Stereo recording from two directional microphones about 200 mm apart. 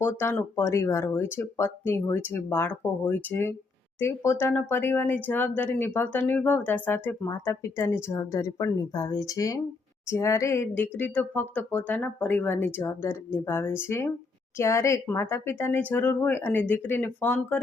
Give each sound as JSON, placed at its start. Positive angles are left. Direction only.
{"t": 0.0, "sound": "speech", "side_deg": 10}